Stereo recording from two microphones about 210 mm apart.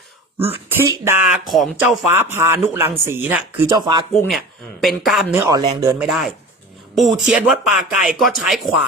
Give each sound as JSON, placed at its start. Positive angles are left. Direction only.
{"t": 0.9, "sound": "speech", "side_deg": -10}
{"t": 2.0, "sound": "speech", "side_deg": -10}
{"t": 4.3, "sound": "speech", "side_deg": 0}
{"t": 5.3, "sound": "speech", "side_deg": -15}
{"t": 6.0, "sound": "speech", "side_deg": 0}